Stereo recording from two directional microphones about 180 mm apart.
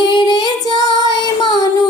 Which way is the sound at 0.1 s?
25° left (ahead or behind).